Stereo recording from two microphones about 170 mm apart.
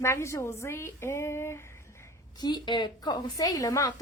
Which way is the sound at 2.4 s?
25° left (ahead or behind).